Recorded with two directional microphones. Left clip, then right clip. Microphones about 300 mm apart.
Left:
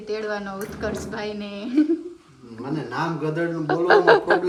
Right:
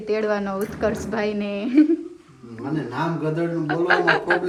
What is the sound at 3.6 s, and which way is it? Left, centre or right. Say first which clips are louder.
Speech: left 4 dB; left.